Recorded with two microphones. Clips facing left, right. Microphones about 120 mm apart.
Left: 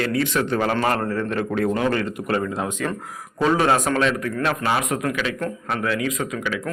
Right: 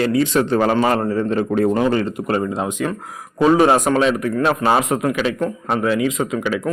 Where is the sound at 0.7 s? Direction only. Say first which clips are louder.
Right 5 dB; 15° right (ahead or behind).